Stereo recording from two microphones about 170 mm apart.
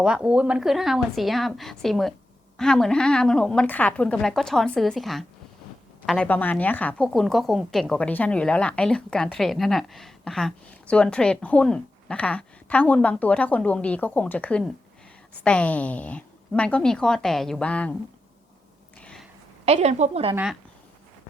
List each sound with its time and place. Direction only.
0.0 s a woman's voice: 5° right (ahead or behind)
18.9 s a sound: 5° left (ahead or behind)
19.6 s a woman's voice: 40° right (ahead or behind)
20.3 s a woman's voice: 5° right (ahead or behind)